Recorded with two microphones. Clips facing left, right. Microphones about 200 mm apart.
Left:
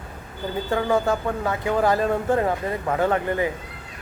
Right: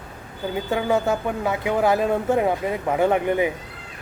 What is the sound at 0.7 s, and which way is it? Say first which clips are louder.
Speech: even; 10° right (ahead or behind).